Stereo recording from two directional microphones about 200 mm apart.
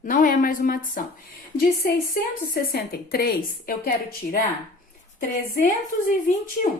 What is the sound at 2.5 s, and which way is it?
Speech, 50° left (ahead or behind).